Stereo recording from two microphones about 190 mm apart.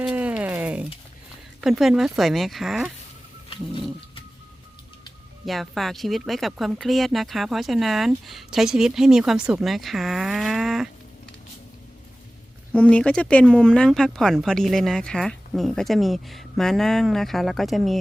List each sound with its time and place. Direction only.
0.0 s a sound: 5° right (ahead or behind)
1.6 s speech: centre (ahead or behind)
3.5 s dog: 30° left (ahead or behind)
5.5 s speech: centre (ahead or behind)
12.7 s speech: 5° left (ahead or behind)